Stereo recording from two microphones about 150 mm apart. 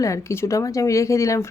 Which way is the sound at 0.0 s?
20° left (ahead or behind).